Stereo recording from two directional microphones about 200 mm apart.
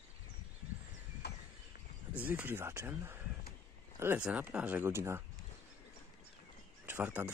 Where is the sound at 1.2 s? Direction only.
55° left (ahead or behind).